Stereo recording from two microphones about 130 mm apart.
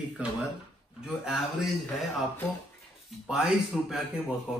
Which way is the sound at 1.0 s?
5° right (ahead or behind).